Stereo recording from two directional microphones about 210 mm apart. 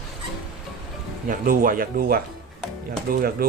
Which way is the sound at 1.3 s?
40° right (ahead or behind).